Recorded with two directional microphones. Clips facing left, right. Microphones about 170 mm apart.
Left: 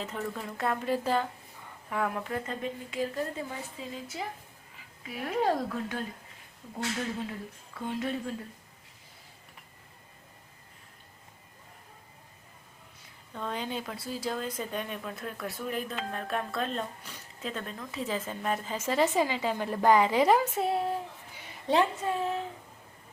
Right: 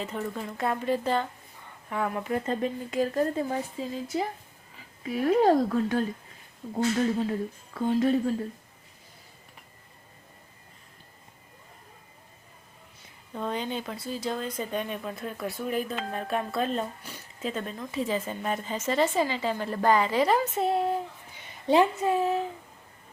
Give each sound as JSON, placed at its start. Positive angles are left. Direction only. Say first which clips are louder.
{"t": 0.0, "sound": "speech", "louder": "right 3 dB", "side_deg": 0}
{"t": 2.5, "sound": "speech", "louder": "right 7 dB", "side_deg": -40}
{"t": 13.3, "sound": "speech", "louder": "right 3 dB", "side_deg": -5}